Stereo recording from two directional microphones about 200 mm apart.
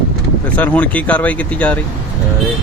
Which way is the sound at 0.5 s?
5° left (ahead or behind).